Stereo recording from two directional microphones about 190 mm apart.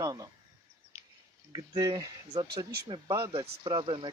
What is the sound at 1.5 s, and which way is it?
Speech, 20° right (ahead or behind).